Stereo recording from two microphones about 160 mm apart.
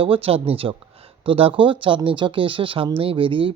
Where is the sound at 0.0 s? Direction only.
35° right (ahead or behind).